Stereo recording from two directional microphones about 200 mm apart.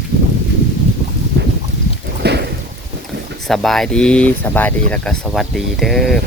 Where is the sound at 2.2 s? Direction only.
55° right (ahead or behind).